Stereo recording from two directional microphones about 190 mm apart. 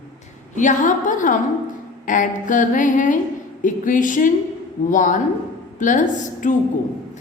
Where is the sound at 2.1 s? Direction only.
45° left (ahead or behind).